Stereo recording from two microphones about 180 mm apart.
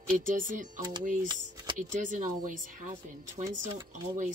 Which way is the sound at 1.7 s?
45° right (ahead or behind).